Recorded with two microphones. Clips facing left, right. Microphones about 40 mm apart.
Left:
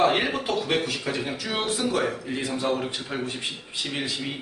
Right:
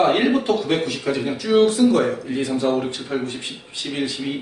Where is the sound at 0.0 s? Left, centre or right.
Centre.